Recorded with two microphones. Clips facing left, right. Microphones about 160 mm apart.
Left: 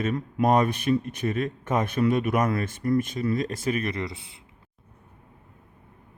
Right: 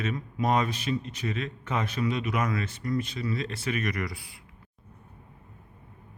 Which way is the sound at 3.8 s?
25° left (ahead or behind).